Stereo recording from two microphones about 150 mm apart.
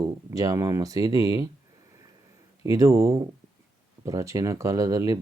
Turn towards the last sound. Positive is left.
turn(degrees=-20)  # may be behind; listen again after turning